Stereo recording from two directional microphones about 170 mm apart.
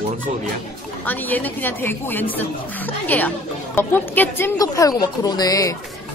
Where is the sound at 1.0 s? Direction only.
10° left (ahead or behind).